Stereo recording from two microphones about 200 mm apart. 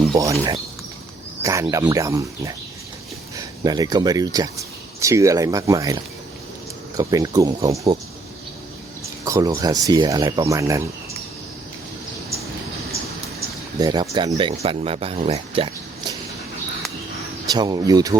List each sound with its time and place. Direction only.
0.2 s speech: 15° right (ahead or behind)
9.2 s speech: 15° right (ahead or behind)
13.7 s speech: 20° right (ahead or behind)
17.5 s speech: 20° right (ahead or behind)